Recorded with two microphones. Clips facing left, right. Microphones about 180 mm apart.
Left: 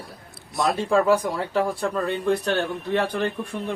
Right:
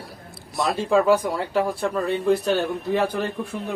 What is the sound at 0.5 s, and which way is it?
A man's voice, centre (ahead or behind).